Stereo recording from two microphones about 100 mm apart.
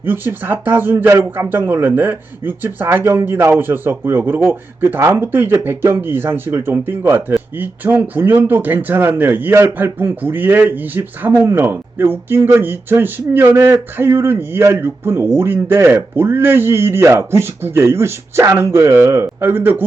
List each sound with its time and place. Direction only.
0.0 s speech: 20° right (ahead or behind)